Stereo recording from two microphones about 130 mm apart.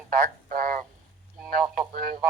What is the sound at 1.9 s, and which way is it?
Speech, 90° right.